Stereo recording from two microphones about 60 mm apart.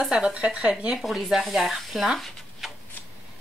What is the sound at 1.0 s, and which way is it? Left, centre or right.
Speech, centre.